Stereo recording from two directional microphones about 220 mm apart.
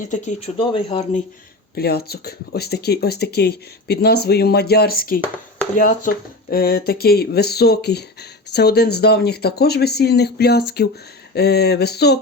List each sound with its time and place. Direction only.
0.0 s speech: 35° left (ahead or behind)
1.7 s speech: 45° left (ahead or behind)